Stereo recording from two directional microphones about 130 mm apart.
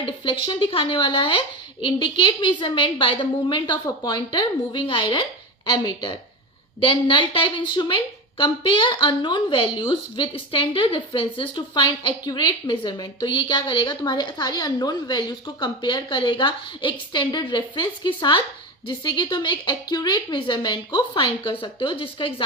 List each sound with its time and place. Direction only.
0.4 s a woman's voice: 40° left (ahead or behind)